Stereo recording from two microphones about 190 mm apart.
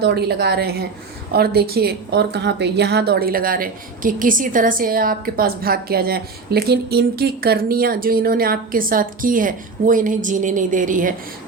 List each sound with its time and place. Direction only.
0.0 s a woman's voice: 60° right (ahead or behind); by 11.1 s 45° right (ahead or behind)